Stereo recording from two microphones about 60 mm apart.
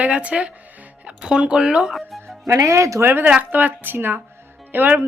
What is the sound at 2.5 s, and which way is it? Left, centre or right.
Speech, right.